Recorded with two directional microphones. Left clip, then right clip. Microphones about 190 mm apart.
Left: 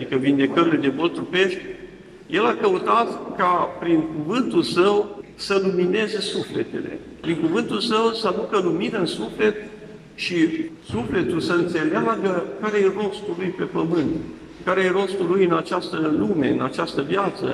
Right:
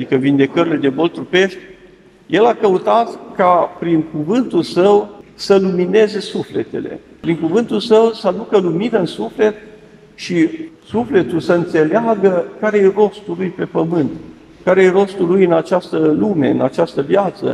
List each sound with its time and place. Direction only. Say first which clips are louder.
0.1 s a man's voice: right 6 dB; 35° right (ahead or behind)
7.2 s a man's voice: right 6 dB; 35° right (ahead or behind)